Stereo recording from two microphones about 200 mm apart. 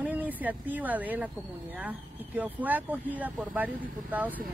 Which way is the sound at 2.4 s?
10° right (ahead or behind).